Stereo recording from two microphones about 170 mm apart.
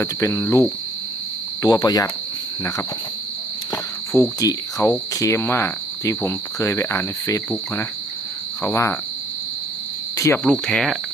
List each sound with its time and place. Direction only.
0.0 s cricket: 15° left (ahead or behind)
1.6 s speech: 20° left (ahead or behind)
3.7 s cricket: 15° left (ahead or behind)
8.6 s cricket: 15° left (ahead or behind)
10.2 s cricket: 15° left (ahead or behind)
10.4 s speech: 5° left (ahead or behind)